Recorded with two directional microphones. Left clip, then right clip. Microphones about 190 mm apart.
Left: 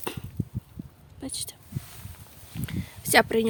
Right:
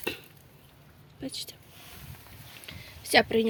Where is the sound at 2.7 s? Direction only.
20° left (ahead or behind).